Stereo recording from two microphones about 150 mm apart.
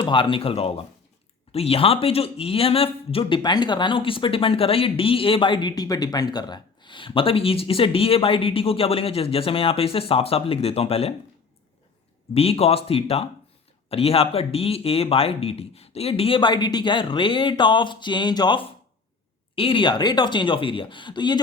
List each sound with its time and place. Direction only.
0.0 s speech: 35° left (ahead or behind)
12.3 s speech: 40° left (ahead or behind)